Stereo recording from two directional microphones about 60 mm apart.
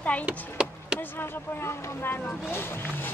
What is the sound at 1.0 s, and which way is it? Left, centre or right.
Speech, left.